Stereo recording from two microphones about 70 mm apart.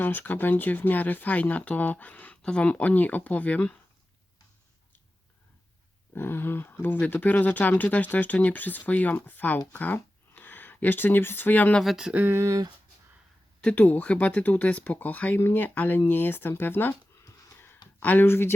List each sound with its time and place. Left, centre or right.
0.0 s speech: left
6.1 s speech: left
11.8 s speech: centre
12.1 s speech: right
12.4 s speech: right
13.6 s speech: centre
18.0 s speech: left